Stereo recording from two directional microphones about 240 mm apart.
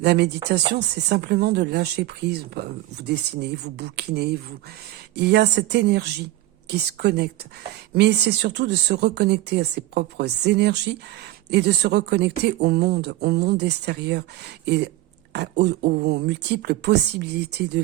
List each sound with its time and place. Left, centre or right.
0.0 s speech: right